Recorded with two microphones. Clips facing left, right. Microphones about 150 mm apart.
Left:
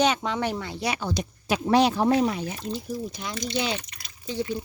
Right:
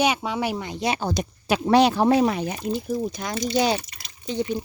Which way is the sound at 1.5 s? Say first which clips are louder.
Right 3 dB; 70° right (ahead or behind).